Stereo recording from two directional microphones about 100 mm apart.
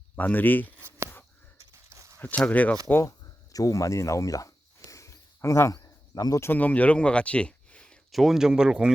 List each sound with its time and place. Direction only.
0.2 s speech: 15° left (ahead or behind)
0.8 s a sound: 25° right (ahead or behind)
2.1 s speech: 15° left (ahead or behind)
2.9 s a sound: 35° left (ahead or behind)
6.5 s speech: 15° left (ahead or behind)
8.1 s speech: centre (ahead or behind)